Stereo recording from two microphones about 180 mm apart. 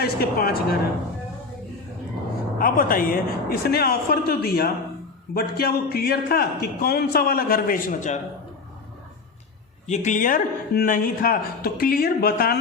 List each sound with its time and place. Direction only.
0.0 s a man's voice: 60° left (ahead or behind)
2.6 s a man's voice: 50° left (ahead or behind)
9.8 s speech: 40° left (ahead or behind); by 12.5 s 60° left (ahead or behind)